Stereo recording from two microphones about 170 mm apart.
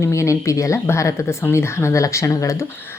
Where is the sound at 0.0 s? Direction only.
15° left (ahead or behind).